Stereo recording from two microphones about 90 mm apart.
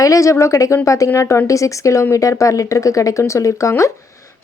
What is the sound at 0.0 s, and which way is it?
Speech, 35° left (ahead or behind).